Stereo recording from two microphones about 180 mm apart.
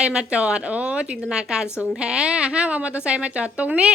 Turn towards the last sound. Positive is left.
turn(degrees=-5)  # may be behind; listen again after turning